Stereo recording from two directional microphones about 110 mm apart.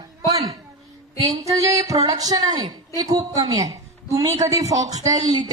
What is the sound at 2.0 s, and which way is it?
A woman's voice, 35° right (ahead or behind).